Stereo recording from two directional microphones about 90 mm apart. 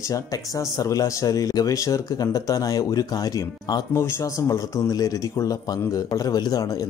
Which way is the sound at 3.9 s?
30° left (ahead or behind).